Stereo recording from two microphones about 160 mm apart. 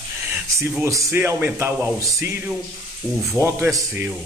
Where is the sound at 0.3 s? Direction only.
15° right (ahead or behind).